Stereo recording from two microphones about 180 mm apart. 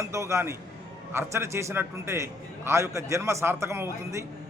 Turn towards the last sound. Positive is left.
turn(degrees=-15)  # may be behind; listen again after turning